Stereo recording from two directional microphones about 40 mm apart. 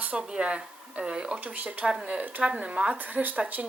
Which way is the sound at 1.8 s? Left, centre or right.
Centre.